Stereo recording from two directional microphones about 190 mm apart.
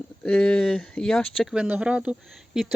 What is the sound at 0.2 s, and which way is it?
Speech, 5° left (ahead or behind).